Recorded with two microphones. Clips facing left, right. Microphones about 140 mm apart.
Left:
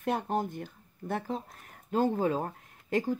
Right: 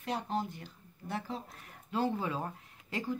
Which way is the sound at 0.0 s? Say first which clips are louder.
Left 5 dB; 50° left (ahead or behind).